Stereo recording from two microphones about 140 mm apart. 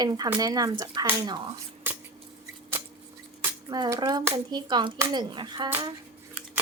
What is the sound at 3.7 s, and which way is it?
Speech, 30° right (ahead or behind).